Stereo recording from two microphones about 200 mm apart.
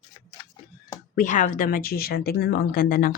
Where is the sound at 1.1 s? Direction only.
40° left (ahead or behind).